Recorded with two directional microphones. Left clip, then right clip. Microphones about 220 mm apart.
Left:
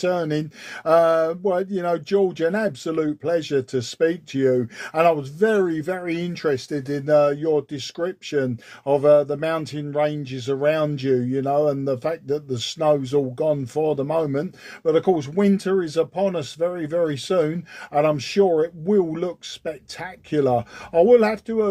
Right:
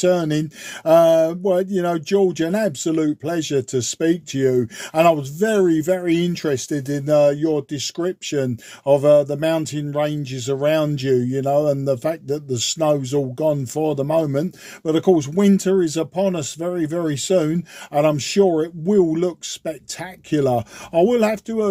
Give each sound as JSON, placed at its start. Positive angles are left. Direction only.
{"t": 0.0, "sound": "speech", "side_deg": -40}